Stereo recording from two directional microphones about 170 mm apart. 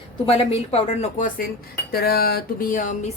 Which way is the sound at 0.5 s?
35° left (ahead or behind).